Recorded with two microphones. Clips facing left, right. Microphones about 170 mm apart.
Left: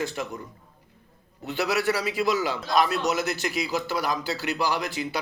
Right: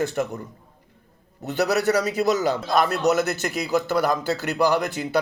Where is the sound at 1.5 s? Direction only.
45° right (ahead or behind).